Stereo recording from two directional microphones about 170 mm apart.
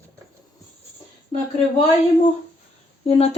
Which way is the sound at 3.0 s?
35° left (ahead or behind).